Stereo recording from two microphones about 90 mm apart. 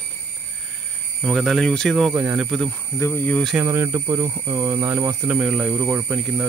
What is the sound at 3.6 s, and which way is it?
Speech, 30° right (ahead or behind).